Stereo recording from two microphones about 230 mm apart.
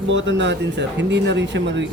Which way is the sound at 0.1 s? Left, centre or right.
Right.